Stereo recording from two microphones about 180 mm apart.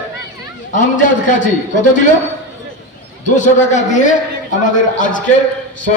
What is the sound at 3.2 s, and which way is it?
A man's voice, 45° left (ahead or behind).